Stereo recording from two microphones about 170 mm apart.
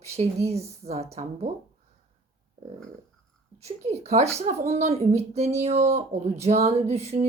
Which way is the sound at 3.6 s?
40° right (ahead or behind).